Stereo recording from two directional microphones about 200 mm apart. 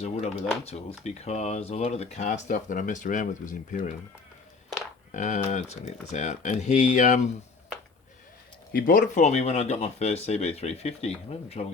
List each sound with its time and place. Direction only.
0.0 s speech: 30° left (ahead or behind)
5.1 s speech: 40° left (ahead or behind)
8.7 s speech: 45° left (ahead or behind)